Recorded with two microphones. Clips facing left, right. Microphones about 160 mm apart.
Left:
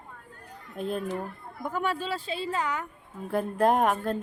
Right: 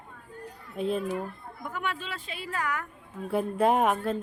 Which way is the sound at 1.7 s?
35° left (ahead or behind).